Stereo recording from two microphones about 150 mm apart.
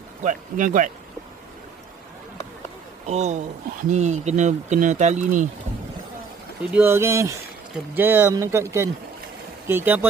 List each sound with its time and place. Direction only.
0.2 s speech: 55° right (ahead or behind)
3.1 s speech: 50° right (ahead or behind)
6.7 s speech: 15° right (ahead or behind)